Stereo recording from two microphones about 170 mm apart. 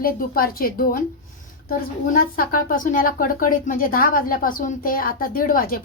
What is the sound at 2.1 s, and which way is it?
Speech, 55° left (ahead or behind).